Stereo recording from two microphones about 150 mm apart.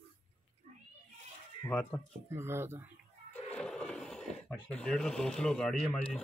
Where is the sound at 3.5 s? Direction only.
5° left (ahead or behind).